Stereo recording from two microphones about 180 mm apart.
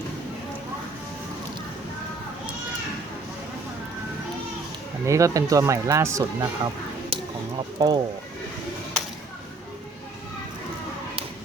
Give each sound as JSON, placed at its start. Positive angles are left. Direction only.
{"t": 5.0, "sound": "speech", "side_deg": -15}
{"t": 7.1, "sound": "a sound", "side_deg": -35}
{"t": 7.8, "sound": "speech", "side_deg": -25}